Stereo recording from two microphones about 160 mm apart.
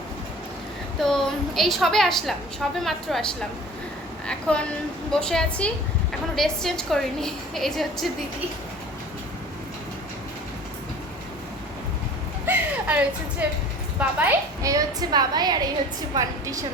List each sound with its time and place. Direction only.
1.0 s a woman's voice: centre (ahead or behind)
4.3 s a woman's voice: 5° left (ahead or behind)
12.5 s a sound: 10° right (ahead or behind)
14.0 s a woman's voice: 10° right (ahead or behind)
14.6 s a woman's voice: 20° right (ahead or behind)